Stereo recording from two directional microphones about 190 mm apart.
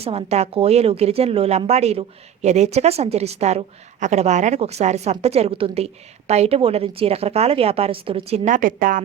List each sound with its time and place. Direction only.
0.0 s a woman's voice: 30° right (ahead or behind)
8.4 s a woman's voice: 45° right (ahead or behind)